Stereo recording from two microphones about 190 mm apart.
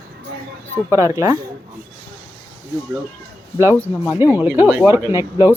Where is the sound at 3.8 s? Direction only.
10° right (ahead or behind).